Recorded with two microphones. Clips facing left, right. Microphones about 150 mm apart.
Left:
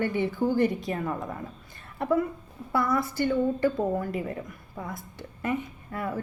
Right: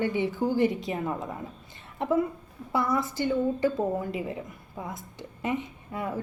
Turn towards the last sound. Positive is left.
turn(degrees=-15)  # may be behind; listen again after turning